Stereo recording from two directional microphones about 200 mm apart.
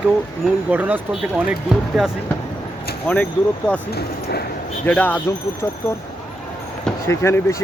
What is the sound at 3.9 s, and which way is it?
Speech, 50° left (ahead or behind).